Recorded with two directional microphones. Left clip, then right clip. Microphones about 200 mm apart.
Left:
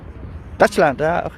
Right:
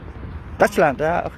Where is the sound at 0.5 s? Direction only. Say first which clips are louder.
Left 2 dB; 15° left (ahead or behind).